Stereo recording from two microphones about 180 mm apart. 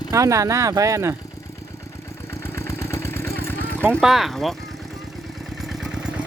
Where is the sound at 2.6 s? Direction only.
15° left (ahead or behind).